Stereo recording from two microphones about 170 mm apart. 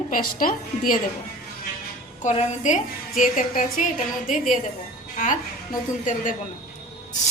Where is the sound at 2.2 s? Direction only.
45° left (ahead or behind).